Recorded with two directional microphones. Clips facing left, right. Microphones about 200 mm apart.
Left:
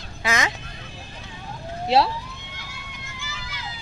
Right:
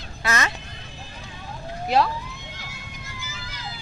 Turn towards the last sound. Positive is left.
turn(degrees=-40)  # may be behind; listen again after turning